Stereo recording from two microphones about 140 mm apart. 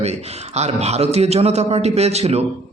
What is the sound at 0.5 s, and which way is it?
A man's voice, 50° right (ahead or behind).